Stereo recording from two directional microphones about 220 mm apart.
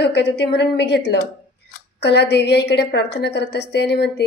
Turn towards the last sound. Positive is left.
turn(degrees=50)  # may be behind; listen again after turning